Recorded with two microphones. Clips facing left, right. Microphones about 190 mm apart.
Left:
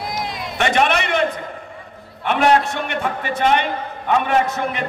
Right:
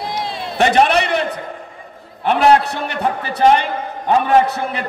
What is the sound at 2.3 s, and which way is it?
A man's voice, 35° right (ahead or behind).